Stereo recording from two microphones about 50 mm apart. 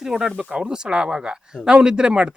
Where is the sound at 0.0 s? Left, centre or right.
Centre.